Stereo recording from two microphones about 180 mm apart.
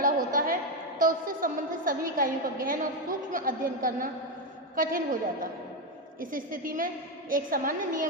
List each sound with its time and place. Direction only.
0.0 s a woman's voice: 50° right (ahead or behind)